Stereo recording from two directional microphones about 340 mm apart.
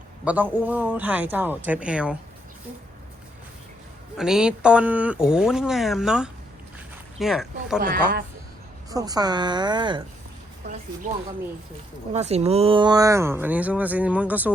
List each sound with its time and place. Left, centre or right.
0.3 s speech: centre
4.2 s speech: centre
8.9 s speech: centre